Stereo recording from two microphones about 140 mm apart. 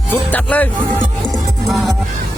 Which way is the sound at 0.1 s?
10° left (ahead or behind).